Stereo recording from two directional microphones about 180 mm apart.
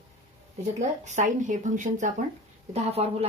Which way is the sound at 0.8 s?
40° right (ahead or behind).